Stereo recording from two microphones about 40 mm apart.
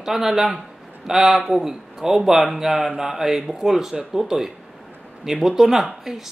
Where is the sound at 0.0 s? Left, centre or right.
Centre.